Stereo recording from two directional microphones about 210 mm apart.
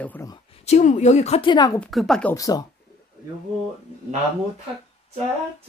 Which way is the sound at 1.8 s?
Centre (ahead or behind).